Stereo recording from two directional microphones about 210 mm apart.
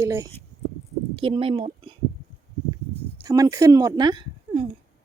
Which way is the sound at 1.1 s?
25° right (ahead or behind).